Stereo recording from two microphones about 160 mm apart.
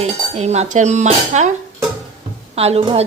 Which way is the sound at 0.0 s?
40° right (ahead or behind).